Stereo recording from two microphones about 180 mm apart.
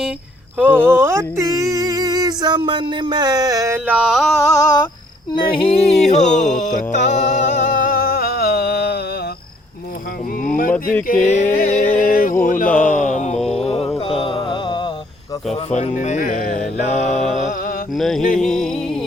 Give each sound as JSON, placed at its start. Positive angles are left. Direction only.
{"t": 0.5, "sound": "speech", "side_deg": -10}
{"t": 4.4, "sound": "a sound", "side_deg": 15}
{"t": 5.5, "sound": "music", "side_deg": 30}
{"t": 10.4, "sound": "speech", "side_deg": 50}
{"t": 11.0, "sound": "music", "side_deg": 45}
{"t": 13.1, "sound": "mantra", "side_deg": 40}
{"t": 13.4, "sound": "mantra", "side_deg": 0}
{"t": 14.0, "sound": "music", "side_deg": 30}
{"t": 15.7, "sound": "music", "side_deg": 40}
{"t": 17.3, "sound": "mantra", "side_deg": 40}
{"t": 17.9, "sound": "music", "side_deg": 0}